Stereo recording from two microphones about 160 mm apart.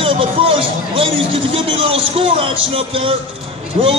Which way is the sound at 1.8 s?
35° right (ahead or behind).